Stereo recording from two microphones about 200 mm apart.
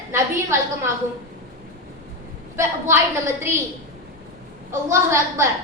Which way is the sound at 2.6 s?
15° right (ahead or behind).